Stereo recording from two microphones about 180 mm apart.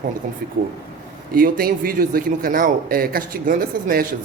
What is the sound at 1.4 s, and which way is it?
A man's voice, 55° right (ahead or behind).